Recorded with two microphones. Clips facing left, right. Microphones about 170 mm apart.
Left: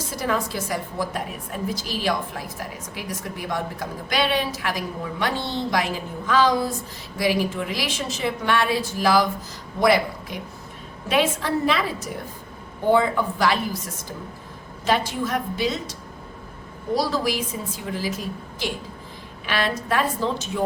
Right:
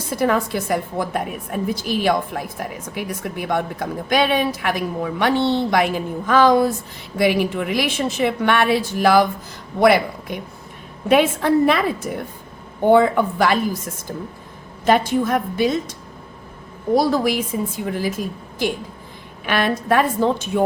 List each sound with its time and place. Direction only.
0.1 s a woman's voice: 55° right (ahead or behind)